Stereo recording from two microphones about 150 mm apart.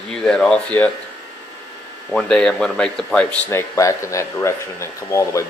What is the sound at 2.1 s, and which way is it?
Speech, 5° left (ahead or behind).